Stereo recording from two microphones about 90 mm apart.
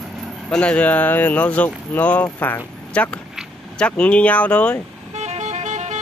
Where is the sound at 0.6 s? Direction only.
15° left (ahead or behind).